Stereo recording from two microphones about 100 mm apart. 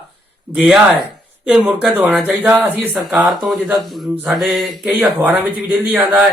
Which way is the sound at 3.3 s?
Centre (ahead or behind).